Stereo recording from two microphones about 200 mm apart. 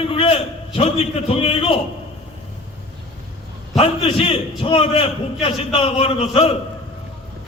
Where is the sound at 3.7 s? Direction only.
30° left (ahead or behind).